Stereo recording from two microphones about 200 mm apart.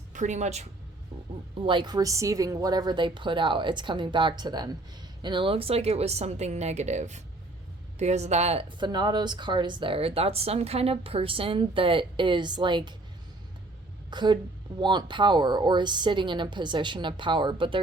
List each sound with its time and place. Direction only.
0.1 s a woman's voice: 35° right (ahead or behind)
14.1 s speech: 20° right (ahead or behind)